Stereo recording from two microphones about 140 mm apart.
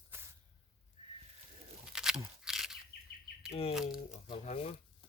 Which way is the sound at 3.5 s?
45° left (ahead or behind).